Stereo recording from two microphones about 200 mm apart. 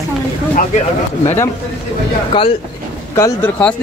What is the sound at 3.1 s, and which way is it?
Speech, 10° left (ahead or behind).